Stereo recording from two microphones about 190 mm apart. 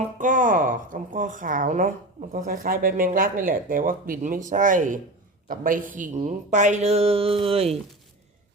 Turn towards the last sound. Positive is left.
turn(degrees=-30)  # may be behind; listen again after turning